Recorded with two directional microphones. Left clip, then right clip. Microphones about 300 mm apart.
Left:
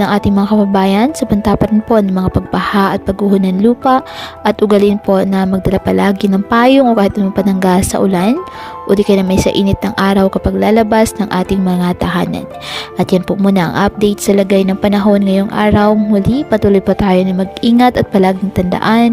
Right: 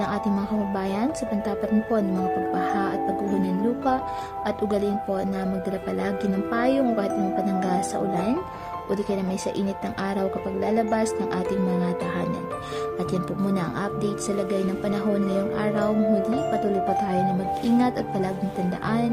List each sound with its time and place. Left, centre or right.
0.0 s speech: left
4.4 s speech: left